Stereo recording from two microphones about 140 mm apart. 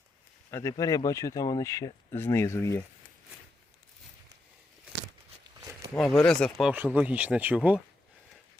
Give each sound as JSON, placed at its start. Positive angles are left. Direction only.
{"t": 0.5, "sound": "speech", "side_deg": 25}
{"t": 6.0, "sound": "speech", "side_deg": 5}
{"t": 6.7, "sound": "speech", "side_deg": -10}